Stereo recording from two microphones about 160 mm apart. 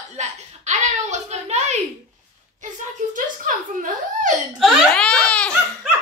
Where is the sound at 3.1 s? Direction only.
55° right (ahead or behind).